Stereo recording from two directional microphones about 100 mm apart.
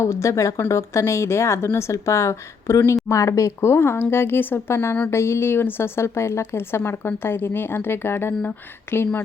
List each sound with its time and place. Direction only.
0.0 s a woman's voice: 30° left (ahead or behind)